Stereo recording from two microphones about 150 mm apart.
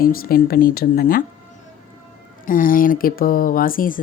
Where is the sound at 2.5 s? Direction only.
65° left (ahead or behind).